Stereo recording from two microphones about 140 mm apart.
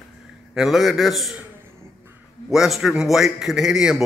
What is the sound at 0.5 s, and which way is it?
Speech, centre (ahead or behind).